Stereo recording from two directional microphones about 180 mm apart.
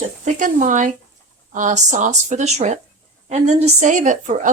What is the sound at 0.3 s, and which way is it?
A woman's voice, 45° right (ahead or behind).